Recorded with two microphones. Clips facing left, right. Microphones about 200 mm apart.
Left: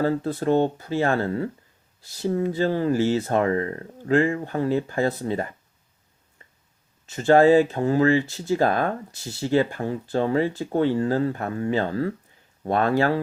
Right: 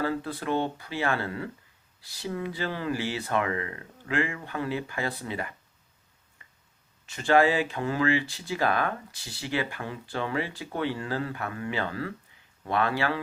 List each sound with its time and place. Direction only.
0.0 s speech: 40° left (ahead or behind)
7.2 s speech: 40° left (ahead or behind)
10.9 s speech: 30° left (ahead or behind)